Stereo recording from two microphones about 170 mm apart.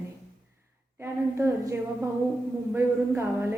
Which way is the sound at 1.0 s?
15° right (ahead or behind).